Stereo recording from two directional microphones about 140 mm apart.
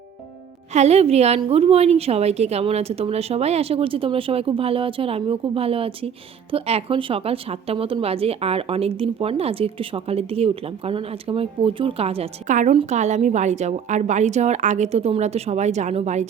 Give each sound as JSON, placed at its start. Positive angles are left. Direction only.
{"t": 0.7, "sound": "a woman's voice", "side_deg": -50}
{"t": 12.5, "sound": "a woman's voice", "side_deg": -60}